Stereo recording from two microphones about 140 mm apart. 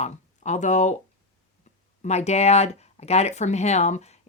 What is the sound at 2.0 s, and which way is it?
Speech, 50° left (ahead or behind).